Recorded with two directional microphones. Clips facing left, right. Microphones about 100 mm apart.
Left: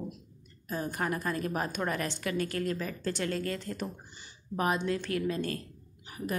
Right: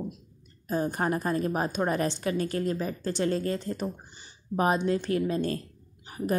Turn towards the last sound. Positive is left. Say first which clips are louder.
# right 6 dB
turn(degrees=-35)  # may be behind; listen again after turning